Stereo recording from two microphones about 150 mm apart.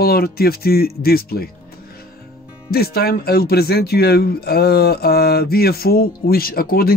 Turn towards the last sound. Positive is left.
turn(degrees=85)